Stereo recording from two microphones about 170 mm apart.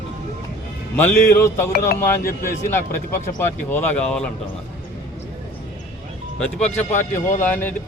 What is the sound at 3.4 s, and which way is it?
Speech, 10° left (ahead or behind).